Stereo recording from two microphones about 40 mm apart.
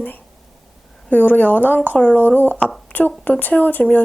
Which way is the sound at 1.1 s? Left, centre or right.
Left.